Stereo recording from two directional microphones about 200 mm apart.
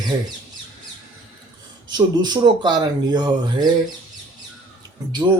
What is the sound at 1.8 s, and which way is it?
Speech, 20° right (ahead or behind).